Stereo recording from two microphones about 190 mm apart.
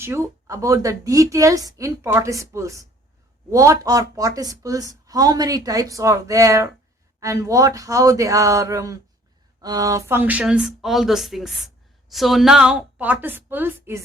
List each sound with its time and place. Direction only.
0.0 s a woman's voice: 15° right (ahead or behind)